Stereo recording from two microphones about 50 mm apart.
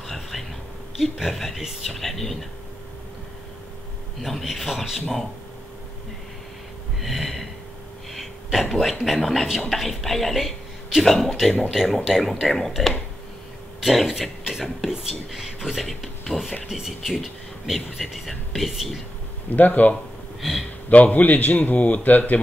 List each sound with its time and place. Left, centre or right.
0.0 s whispering: centre
1.1 s speech: centre
4.2 s speech: centre
7.0 s snort: centre
8.1 s throat clearing: centre
9.0 s speech: centre
16.6 s speech: centre
19.5 s a man's voice: left
20.3 s speech: centre
20.9 s a man's voice: left